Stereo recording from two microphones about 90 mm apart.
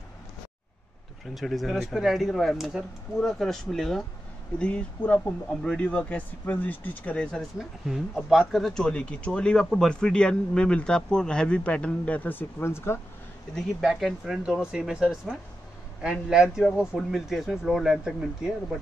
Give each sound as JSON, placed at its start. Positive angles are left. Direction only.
{"t": 1.3, "sound": "speech", "side_deg": 0}
{"t": 7.5, "sound": "speech", "side_deg": -5}
{"t": 13.8, "sound": "speech", "side_deg": -5}